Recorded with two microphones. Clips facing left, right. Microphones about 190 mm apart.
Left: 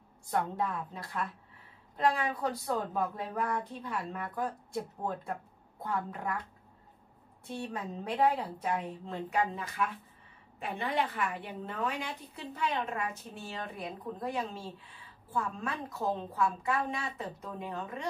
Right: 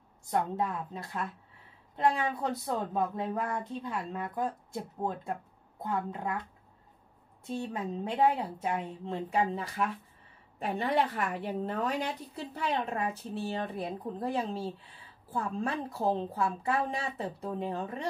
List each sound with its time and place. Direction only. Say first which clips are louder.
0.3 s a woman's voice: right 2 dB; 20° right (ahead or behind)
5.8 s a woman's voice: right 2 dB; 20° right (ahead or behind)
7.7 s a woman's voice: even; 25° right (ahead or behind)